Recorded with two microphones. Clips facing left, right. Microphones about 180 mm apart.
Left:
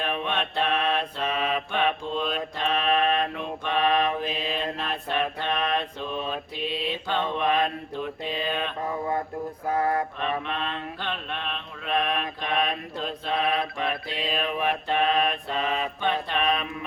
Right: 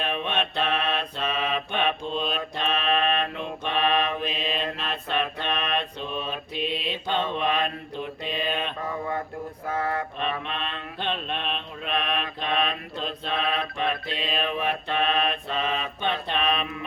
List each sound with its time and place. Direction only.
0.0 s mantra: 20° right (ahead or behind)
9.6 s mantra: 40° left (ahead or behind)
10.4 s mantra: 20° right (ahead or behind)